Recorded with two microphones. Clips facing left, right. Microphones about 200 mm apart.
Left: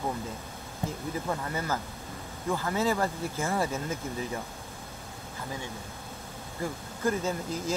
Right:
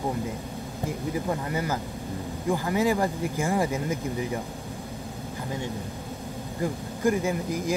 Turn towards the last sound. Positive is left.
turn(degrees=-15)  # may be behind; listen again after turning